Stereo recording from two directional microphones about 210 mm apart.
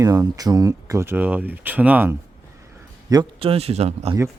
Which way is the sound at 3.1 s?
20° right (ahead or behind).